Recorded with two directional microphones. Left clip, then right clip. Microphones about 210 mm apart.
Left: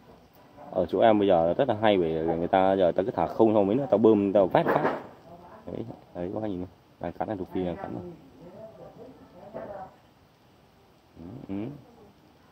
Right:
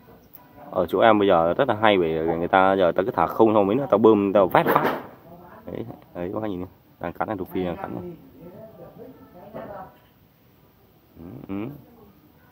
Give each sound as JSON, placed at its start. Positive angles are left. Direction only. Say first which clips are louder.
{"t": 0.7, "sound": "speech", "louder": "right 4 dB", "side_deg": 25}
{"t": 5.7, "sound": "speech", "louder": "right 3 dB", "side_deg": 20}
{"t": 9.5, "sound": "a sound", "louder": "right 2 dB", "side_deg": -35}
{"t": 11.4, "sound": "dog", "louder": "right 3 dB", "side_deg": 25}